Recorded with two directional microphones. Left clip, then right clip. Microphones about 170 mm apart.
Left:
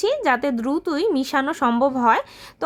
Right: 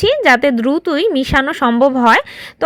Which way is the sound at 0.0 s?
25° right (ahead or behind).